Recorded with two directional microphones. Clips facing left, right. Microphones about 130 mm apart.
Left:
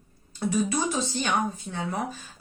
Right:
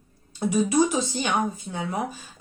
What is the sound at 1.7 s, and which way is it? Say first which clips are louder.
Speech: right 2 dB; 10° right (ahead or behind).